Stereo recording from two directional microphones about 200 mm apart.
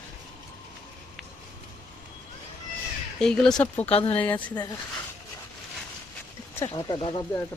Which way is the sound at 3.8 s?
30° left (ahead or behind).